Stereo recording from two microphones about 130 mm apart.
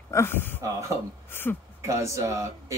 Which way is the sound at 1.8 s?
25° right (ahead or behind).